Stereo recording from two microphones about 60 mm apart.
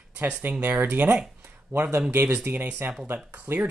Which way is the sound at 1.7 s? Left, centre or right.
Right.